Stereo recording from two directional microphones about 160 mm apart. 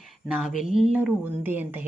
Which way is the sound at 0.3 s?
5° right (ahead or behind).